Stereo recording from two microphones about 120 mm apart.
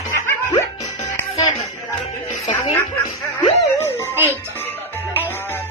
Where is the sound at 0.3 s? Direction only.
25° left (ahead or behind).